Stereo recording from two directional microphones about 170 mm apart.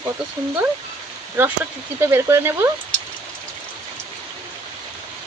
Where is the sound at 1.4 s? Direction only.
15° right (ahead or behind).